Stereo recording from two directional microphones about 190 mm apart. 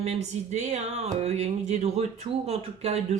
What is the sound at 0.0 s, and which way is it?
Speech, 35° right (ahead or behind).